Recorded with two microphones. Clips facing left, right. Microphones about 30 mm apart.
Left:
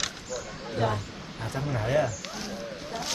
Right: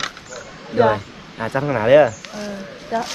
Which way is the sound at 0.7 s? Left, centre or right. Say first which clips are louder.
Right 13 dB; right.